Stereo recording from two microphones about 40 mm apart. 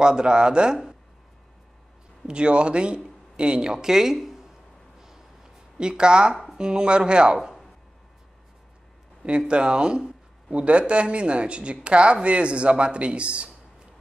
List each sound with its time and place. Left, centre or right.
0.0 s speech: right
2.2 s speech: right; by 4.5 s centre
5.0 s a sound: centre
6.6 s speech: right
9.5 s speech: right